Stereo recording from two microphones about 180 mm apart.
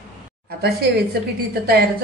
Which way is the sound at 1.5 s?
60° right (ahead or behind).